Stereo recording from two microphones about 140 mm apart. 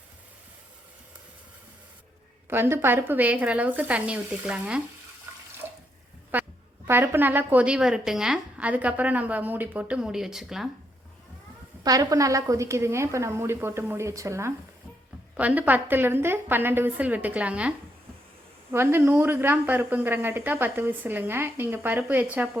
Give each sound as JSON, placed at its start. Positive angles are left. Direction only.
{"t": 2.5, "sound": "a woman's voice", "side_deg": -15}
{"t": 6.3, "sound": "quack", "side_deg": -15}
{"t": 6.8, "sound": "a woman's voice", "side_deg": -15}
{"t": 11.8, "sound": "a woman's voice", "side_deg": -25}